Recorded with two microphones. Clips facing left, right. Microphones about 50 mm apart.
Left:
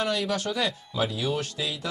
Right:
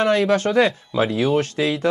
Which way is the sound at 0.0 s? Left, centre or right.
Right.